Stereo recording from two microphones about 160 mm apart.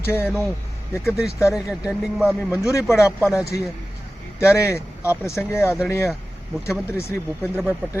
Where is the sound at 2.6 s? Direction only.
20° left (ahead or behind).